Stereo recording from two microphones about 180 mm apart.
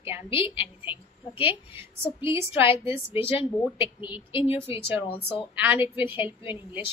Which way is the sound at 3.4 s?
30° left (ahead or behind).